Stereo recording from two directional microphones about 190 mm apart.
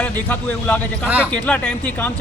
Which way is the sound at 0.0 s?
10° left (ahead or behind).